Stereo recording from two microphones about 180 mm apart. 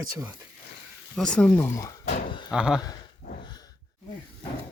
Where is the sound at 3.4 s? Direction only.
20° left (ahead or behind).